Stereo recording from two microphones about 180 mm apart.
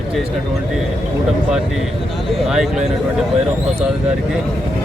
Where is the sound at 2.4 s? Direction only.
Centre (ahead or behind).